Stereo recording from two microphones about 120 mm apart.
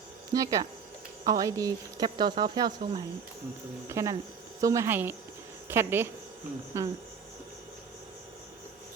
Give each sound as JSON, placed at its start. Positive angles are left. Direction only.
{"t": 0.3, "sound": "a woman's voice", "side_deg": -30}
{"t": 2.0, "sound": "speech", "side_deg": -40}
{"t": 3.8, "sound": "a woman's voice", "side_deg": -25}